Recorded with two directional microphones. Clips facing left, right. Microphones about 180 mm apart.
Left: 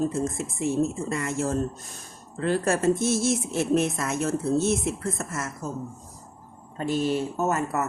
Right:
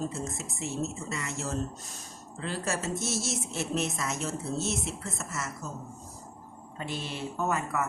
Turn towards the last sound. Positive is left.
turn(degrees=45)  # may be behind; listen again after turning